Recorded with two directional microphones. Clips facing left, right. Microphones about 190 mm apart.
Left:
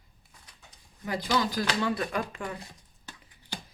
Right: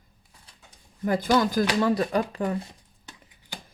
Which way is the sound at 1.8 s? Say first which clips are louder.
Right 6 dB; 35° right (ahead or behind).